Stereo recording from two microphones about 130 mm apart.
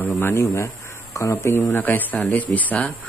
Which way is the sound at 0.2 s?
20° left (ahead or behind).